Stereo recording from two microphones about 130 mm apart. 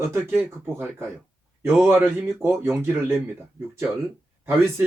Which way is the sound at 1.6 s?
20° right (ahead or behind).